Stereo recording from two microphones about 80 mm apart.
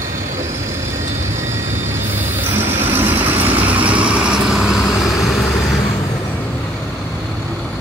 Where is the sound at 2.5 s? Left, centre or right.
Right; by 4.9 s centre.